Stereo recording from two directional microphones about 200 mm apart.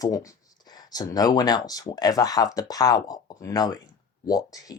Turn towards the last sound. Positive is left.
turn(degrees=20)  # may be behind; listen again after turning